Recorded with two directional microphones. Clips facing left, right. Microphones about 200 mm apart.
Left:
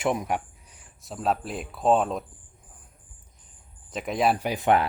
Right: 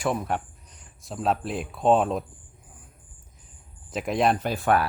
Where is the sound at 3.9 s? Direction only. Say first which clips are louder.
Right 1 dB; centre (ahead or behind); by 4.8 s 20° left (ahead or behind).